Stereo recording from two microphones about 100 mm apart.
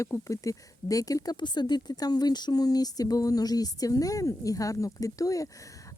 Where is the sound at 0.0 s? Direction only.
30° left (ahead or behind).